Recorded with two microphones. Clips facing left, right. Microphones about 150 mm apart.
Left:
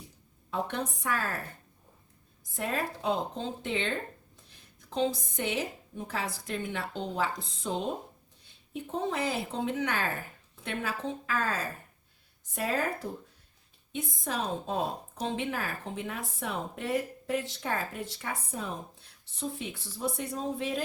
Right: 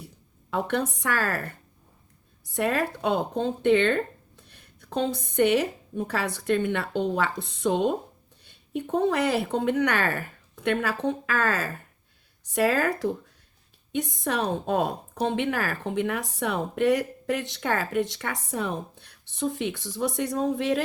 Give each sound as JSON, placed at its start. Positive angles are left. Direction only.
{"t": 0.5, "sound": "a woman's voice", "side_deg": -75}
{"t": 13.9, "sound": "a woman's voice", "side_deg": -75}